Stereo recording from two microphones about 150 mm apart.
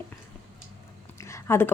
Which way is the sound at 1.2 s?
20° left (ahead or behind).